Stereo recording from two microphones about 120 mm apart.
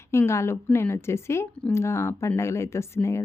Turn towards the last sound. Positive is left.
turn(degrees=25)  # may be behind; listen again after turning